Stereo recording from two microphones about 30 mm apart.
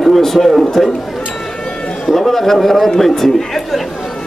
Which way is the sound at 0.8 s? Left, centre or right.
Centre.